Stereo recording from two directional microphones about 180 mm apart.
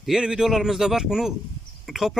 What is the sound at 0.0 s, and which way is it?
Speech, 5° right (ahead or behind).